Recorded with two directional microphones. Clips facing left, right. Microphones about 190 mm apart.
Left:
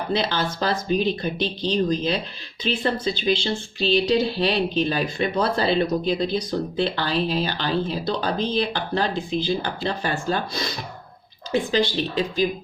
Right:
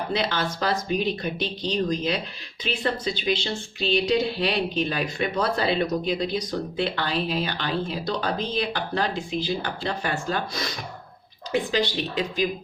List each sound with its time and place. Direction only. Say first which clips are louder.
0.1 s speech: left 4 dB; 30° left (ahead or behind)